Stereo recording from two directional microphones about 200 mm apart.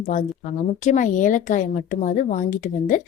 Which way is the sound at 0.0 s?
40° left (ahead or behind).